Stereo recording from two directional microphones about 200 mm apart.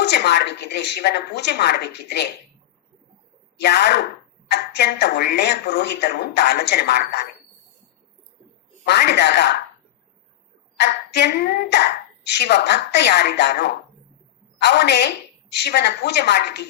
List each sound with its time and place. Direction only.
0.0 s speech: 55° left (ahead or behind)
3.6 s speech: 55° left (ahead or behind)
8.8 s speech: 55° left (ahead or behind)
10.8 s speech: 55° left (ahead or behind)